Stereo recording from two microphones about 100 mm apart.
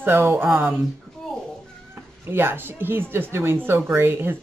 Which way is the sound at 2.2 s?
25° right (ahead or behind).